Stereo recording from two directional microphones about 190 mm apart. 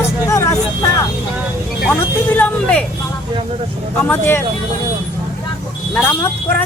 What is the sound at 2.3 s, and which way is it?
Speech, 10° left (ahead or behind).